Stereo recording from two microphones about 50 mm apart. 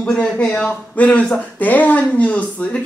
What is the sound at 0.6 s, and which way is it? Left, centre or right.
Speech, left.